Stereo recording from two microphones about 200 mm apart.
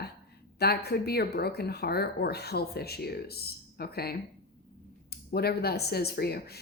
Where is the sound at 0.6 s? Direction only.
55° left (ahead or behind).